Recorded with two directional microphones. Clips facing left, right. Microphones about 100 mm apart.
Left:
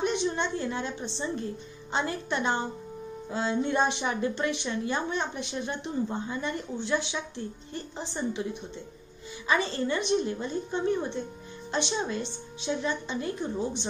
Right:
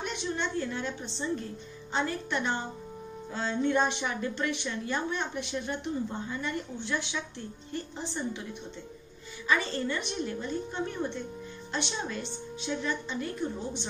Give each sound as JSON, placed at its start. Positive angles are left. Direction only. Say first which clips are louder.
{"t": 0.0, "sound": "a woman's voice", "louder": "left 5 dB", "side_deg": 20}
{"t": 9.5, "sound": "a woman's voice", "louder": "left 2 dB", "side_deg": 20}